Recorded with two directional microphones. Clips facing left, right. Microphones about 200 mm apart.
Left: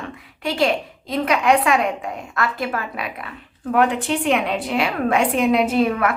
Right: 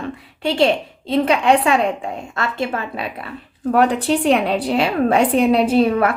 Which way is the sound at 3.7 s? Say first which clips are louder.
Right 3 dB; 35° right (ahead or behind).